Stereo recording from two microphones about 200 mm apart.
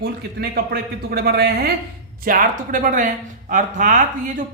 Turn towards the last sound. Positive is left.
turn(degrees=-40)  # may be behind; listen again after turning